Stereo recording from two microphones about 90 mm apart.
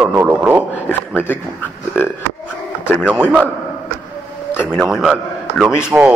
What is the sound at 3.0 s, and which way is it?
Speech, 10° right (ahead or behind).